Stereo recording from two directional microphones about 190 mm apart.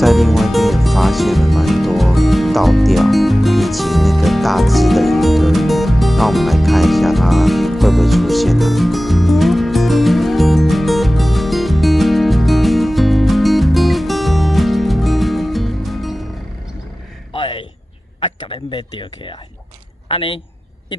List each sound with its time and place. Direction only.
0.0 s music: centre (ahead or behind)
17.3 s a sound: 25° left (ahead or behind)
18.2 s speech: 25° left (ahead or behind)